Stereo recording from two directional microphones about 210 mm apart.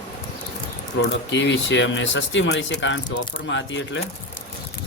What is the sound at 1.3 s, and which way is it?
Speech, 60° left (ahead or behind).